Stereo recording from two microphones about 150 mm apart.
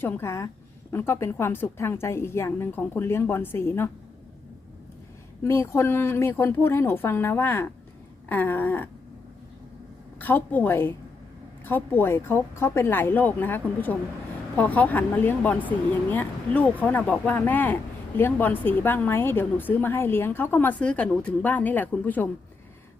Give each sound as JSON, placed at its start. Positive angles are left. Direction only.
{"t": 0.0, "sound": "a woman's voice", "side_deg": 20}
{"t": 5.4, "sound": "a woman's voice", "side_deg": 20}
{"t": 10.2, "sound": "a woman's voice", "side_deg": 10}